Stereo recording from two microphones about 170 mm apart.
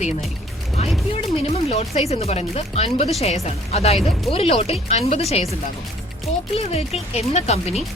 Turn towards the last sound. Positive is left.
turn(degrees=40)  # may be behind; listen again after turning